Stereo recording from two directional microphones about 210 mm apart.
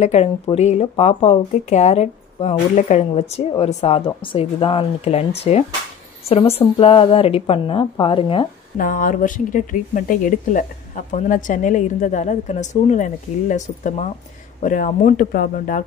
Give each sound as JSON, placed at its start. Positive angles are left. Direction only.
{"t": 0.0, "sound": "speech", "side_deg": 30}
{"t": 8.7, "sound": "a woman's voice", "side_deg": 40}